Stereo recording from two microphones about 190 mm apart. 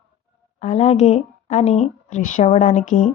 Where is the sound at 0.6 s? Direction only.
35° left (ahead or behind).